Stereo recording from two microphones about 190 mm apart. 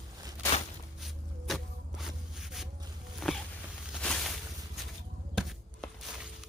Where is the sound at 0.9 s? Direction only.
Centre (ahead or behind).